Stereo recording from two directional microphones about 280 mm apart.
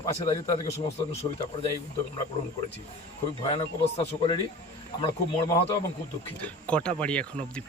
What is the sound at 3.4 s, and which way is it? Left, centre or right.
A man's voice, centre.